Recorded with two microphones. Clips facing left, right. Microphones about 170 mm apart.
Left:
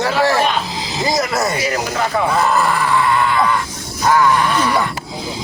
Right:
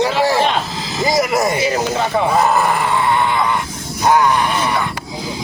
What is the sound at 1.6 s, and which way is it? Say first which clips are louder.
Speech: right 3 dB; 25° right (ahead or behind).